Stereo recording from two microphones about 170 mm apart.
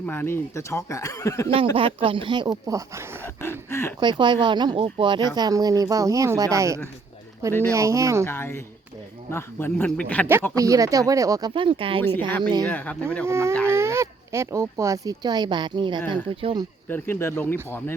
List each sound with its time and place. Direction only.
0.0 s speech: 10° left (ahead or behind)
1.7 s speech: 30° right (ahead or behind)
3.4 s a sound: 15° left (ahead or behind)
4.0 s speech: 25° right (ahead or behind)
8.3 s speech: 15° left (ahead or behind)
10.5 s speech: 20° right (ahead or behind)
12.6 s speech: 10° left (ahead or behind)
13.2 s speech: 15° right (ahead or behind); by 16.6 s 30° right (ahead or behind)
16.9 s speech: 15° left (ahead or behind)